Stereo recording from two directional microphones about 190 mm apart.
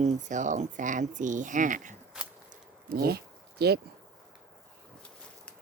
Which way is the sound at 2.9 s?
55° right (ahead or behind).